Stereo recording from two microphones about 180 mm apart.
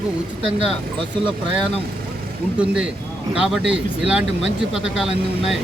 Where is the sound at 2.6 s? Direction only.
5° right (ahead or behind).